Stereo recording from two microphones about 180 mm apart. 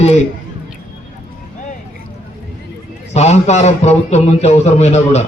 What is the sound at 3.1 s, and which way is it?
A man's voice, 40° left (ahead or behind).